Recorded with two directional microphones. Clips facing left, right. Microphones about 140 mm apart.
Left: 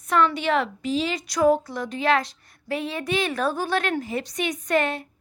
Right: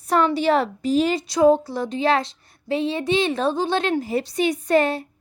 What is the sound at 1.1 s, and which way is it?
Speech, 25° right (ahead or behind).